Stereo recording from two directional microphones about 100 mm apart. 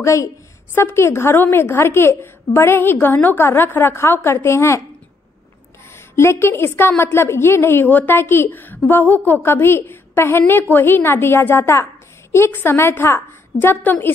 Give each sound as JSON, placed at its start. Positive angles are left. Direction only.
{"t": 0.0, "sound": "a woman's voice", "side_deg": 30}
{"t": 6.1, "sound": "a woman's voice", "side_deg": 25}